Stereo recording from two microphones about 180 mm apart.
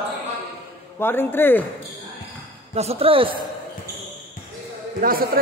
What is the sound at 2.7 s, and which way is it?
Speech, 35° right (ahead or behind).